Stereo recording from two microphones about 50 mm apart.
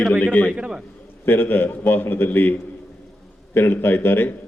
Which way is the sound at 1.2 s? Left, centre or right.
Left.